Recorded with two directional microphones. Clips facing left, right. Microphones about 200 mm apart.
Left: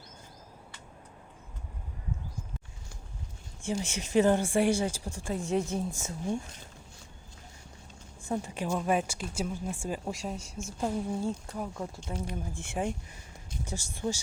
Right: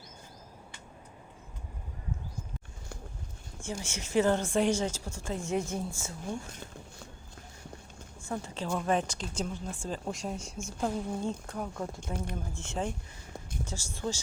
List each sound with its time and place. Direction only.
3.6 s speech: 15° left (ahead or behind)
8.3 s speech: 15° left (ahead or behind)
12.1 s speech: 50° right (ahead or behind)
12.5 s speech: 15° left (ahead or behind)